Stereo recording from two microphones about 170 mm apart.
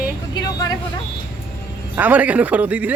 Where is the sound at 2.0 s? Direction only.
10° right (ahead or behind).